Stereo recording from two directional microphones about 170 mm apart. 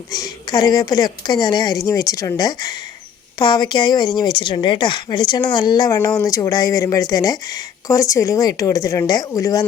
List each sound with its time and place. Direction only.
0.1 s speech: 20° left (ahead or behind)